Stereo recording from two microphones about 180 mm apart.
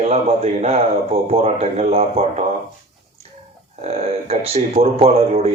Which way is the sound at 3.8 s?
35° right (ahead or behind).